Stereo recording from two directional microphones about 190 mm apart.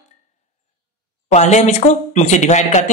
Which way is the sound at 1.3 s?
35° left (ahead or behind).